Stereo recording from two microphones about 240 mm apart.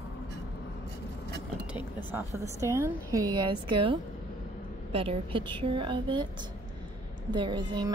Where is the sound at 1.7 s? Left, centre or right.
Centre.